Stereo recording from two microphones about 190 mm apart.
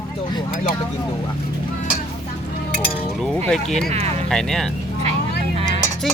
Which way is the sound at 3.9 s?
35° right (ahead or behind).